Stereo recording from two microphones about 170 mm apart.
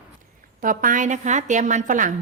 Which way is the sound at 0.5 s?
55° right (ahead or behind).